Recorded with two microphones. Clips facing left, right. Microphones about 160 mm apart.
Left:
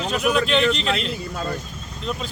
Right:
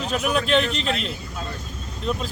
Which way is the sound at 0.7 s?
75° left (ahead or behind).